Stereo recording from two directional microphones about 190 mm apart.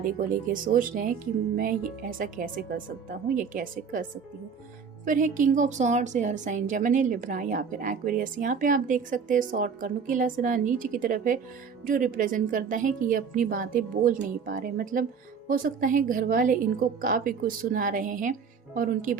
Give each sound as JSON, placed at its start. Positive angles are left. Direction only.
{"t": 0.0, "sound": "a woman's voice", "side_deg": -45}
{"t": 5.0, "sound": "a woman's voice", "side_deg": -45}